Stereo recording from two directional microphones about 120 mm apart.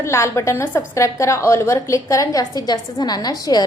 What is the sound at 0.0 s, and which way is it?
A woman's voice, 25° left (ahead or behind).